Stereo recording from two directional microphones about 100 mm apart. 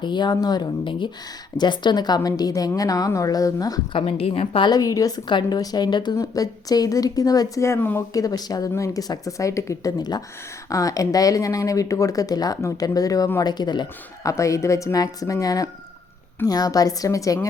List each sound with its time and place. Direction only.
0.0 s a woman's voice: 50° left (ahead or behind)
3.9 s a woman's voice: 75° left (ahead or behind)
4.6 s a woman's voice: 40° left (ahead or behind); by 8.0 s 25° left (ahead or behind)
8.1 s speech: 35° left (ahead or behind)
10.0 s a woman's voice: 45° left (ahead or behind)
14.3 s speech: 30° left (ahead or behind)